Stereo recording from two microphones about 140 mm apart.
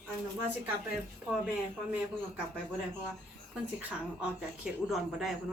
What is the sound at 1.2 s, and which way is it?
Speech, 15° right (ahead or behind).